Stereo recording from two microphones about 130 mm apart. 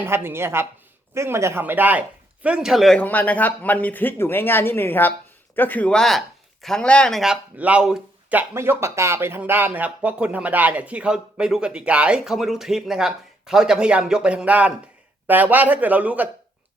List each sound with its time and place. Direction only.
0.0 s a man's voice: 15° right (ahead or behind)